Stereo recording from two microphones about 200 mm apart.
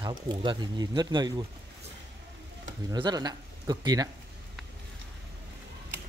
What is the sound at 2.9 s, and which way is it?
Speech, 20° right (ahead or behind).